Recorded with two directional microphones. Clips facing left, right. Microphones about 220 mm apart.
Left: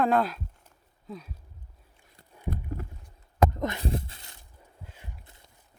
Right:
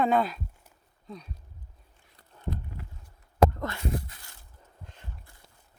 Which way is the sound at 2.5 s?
45° left (ahead or behind).